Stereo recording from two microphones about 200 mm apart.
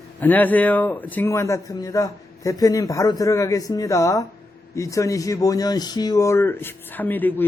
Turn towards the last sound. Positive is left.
turn(degrees=10)  # may be behind; listen again after turning